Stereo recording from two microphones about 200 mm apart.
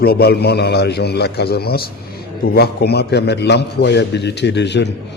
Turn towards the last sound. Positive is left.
turn(degrees=60)  # may be behind; listen again after turning